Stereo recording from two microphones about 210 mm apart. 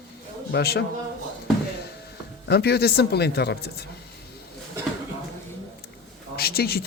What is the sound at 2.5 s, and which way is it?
Speech, 50° left (ahead or behind).